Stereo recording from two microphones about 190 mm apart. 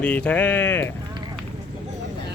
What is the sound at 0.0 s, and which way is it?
Speech, 5° left (ahead or behind).